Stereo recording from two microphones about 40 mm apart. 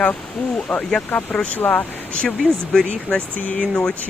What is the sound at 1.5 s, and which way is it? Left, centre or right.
Speech, left.